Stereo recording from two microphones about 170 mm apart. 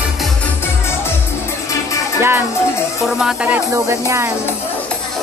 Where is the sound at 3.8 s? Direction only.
15° right (ahead or behind).